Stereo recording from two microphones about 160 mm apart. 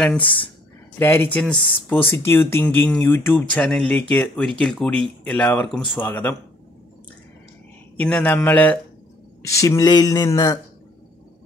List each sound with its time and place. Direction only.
0.0 s speech: 10° left (ahead or behind)
8.0 s speech: 5° left (ahead or behind)
9.5 s speech: 20° left (ahead or behind)